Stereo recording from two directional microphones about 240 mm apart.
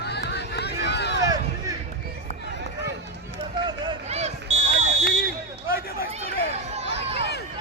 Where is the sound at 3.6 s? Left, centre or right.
Centre.